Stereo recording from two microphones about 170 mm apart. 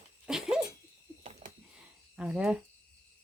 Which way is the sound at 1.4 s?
35° right (ahead or behind).